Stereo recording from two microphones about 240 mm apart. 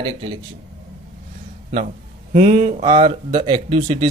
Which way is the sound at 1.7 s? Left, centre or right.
Right.